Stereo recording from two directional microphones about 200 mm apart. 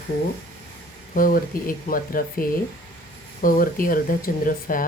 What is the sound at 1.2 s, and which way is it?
Speech, 45° left (ahead or behind).